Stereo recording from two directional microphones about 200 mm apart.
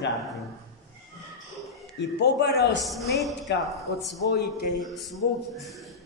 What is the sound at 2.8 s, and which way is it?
Speech, centre (ahead or behind).